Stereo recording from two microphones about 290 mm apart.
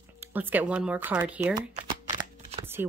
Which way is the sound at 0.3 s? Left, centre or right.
Centre.